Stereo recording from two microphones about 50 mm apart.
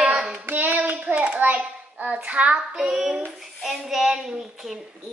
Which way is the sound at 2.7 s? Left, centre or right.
Centre.